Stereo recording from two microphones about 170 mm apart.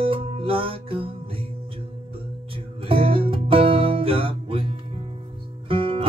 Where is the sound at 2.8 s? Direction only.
30° right (ahead or behind).